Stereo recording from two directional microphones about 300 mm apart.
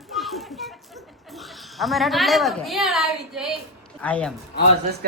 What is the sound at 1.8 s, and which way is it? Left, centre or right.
A woman's voice, centre.